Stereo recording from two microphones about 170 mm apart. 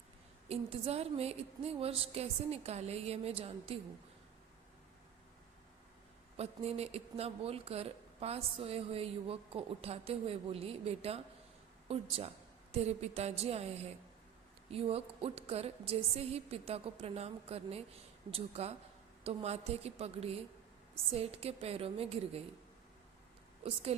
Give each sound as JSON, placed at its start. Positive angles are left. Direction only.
{"t": 0.4, "sound": "speech", "side_deg": -35}
{"t": 6.3, "sound": "speech", "side_deg": -35}
{"t": 23.6, "sound": "speech", "side_deg": -35}